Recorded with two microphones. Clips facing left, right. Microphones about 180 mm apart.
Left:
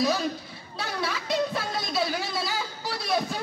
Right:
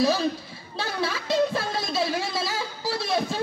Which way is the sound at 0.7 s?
25° right (ahead or behind).